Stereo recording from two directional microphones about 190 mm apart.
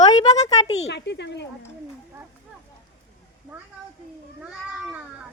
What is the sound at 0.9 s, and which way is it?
Speech, 65° left (ahead or behind).